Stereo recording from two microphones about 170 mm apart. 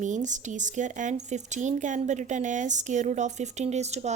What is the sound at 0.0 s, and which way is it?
Speech, 45° right (ahead or behind).